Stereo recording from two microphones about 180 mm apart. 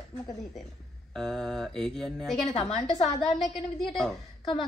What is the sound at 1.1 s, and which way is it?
A man's voice, centre (ahead or behind).